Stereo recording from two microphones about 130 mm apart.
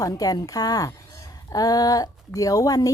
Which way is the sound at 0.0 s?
30° left (ahead or behind).